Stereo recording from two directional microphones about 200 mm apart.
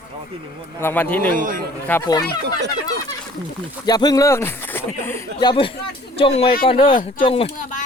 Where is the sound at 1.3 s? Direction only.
40° right (ahead or behind).